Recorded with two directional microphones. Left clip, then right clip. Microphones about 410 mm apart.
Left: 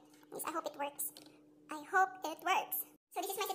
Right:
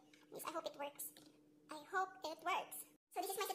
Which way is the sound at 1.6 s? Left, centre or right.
Right.